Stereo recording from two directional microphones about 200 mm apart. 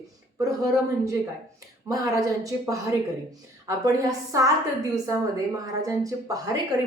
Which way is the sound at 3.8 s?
15° right (ahead or behind).